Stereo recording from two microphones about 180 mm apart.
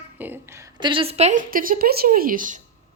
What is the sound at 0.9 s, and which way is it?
Speech, 30° right (ahead or behind).